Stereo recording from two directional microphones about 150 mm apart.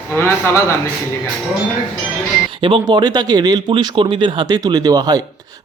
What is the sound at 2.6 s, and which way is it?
A man's voice, 35° right (ahead or behind).